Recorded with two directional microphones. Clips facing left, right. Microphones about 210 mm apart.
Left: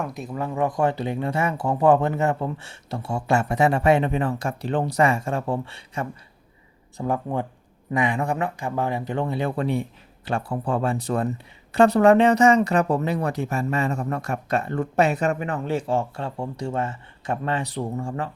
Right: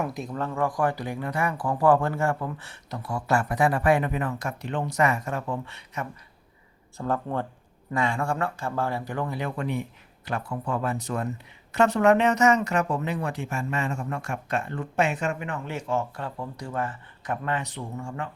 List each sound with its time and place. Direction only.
0.0 s speech: centre (ahead or behind); by 6.1 s 30° left (ahead or behind)
6.9 s speech: 15° left (ahead or behind); by 18.3 s 35° left (ahead or behind)